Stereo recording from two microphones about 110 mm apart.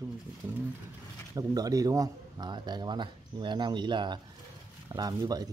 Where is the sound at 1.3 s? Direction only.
35° right (ahead or behind).